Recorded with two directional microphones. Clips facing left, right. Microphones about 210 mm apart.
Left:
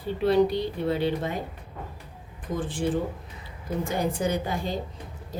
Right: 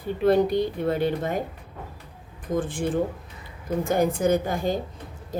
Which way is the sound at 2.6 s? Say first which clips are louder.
Right 5 dB; 50° right (ahead or behind).